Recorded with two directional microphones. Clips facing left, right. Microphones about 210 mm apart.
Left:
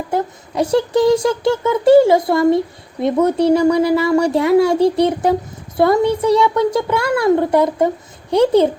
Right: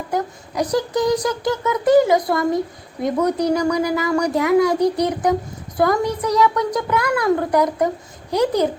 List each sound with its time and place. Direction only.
0.1 s speech: 25° left (ahead or behind)